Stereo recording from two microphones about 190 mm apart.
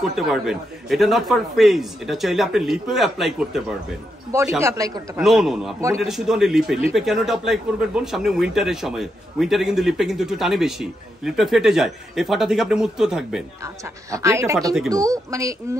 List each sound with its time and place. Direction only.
0.0 s speech: centre (ahead or behind)
4.6 s speech: 15° right (ahead or behind)
5.2 s speech: centre (ahead or behind)
14.1 s speech: 15° right (ahead or behind)